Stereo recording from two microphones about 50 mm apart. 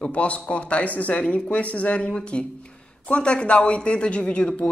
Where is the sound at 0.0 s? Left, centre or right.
Left.